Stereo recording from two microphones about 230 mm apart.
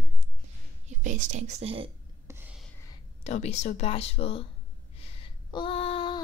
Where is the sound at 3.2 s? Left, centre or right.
Left.